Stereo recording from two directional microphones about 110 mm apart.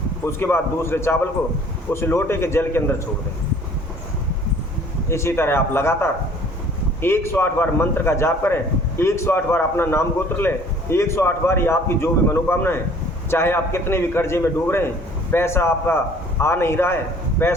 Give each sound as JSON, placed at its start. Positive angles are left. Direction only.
{"t": 0.3, "sound": "a man's voice", "side_deg": 20}
{"t": 5.0, "sound": "a man's voice", "side_deg": 25}